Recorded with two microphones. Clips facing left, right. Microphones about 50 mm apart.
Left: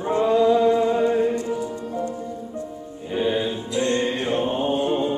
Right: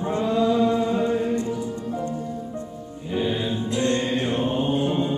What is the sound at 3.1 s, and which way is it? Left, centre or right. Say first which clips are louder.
Music: left 2 dB; centre.